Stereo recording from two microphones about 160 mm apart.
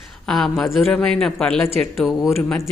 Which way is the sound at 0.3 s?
Centre (ahead or behind).